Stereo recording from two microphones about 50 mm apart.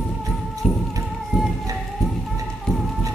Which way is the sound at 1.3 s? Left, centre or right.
Centre.